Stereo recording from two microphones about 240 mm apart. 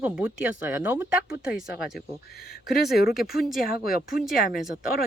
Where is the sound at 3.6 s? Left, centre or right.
Left.